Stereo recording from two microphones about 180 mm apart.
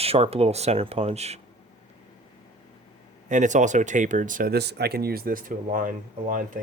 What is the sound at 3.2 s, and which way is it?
Speech, 45° right (ahead or behind).